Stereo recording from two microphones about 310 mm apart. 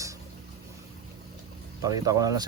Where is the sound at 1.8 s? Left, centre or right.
Centre.